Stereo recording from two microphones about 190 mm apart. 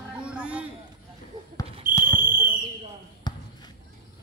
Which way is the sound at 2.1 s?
50° right (ahead or behind).